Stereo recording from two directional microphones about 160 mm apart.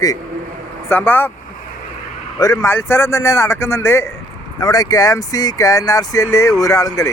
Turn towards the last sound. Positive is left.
turn(degrees=20)  # may be behind; listen again after turning